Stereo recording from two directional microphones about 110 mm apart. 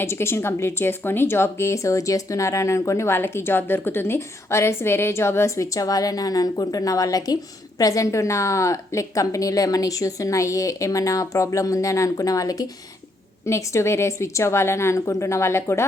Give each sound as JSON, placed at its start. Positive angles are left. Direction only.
{"t": 0.0, "sound": "a woman's voice", "side_deg": 20}